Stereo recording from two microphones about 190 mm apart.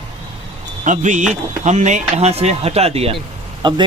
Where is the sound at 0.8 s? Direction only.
40° right (ahead or behind).